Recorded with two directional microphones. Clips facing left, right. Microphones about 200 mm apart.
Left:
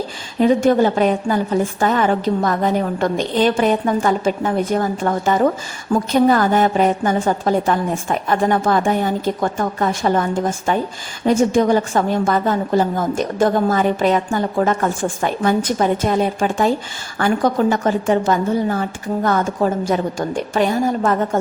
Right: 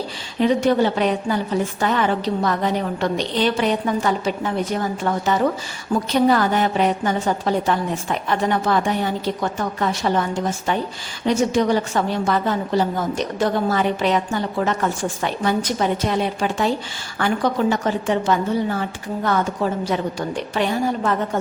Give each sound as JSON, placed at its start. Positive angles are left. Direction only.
{"t": 0.3, "sound": "a woman's voice", "side_deg": 45}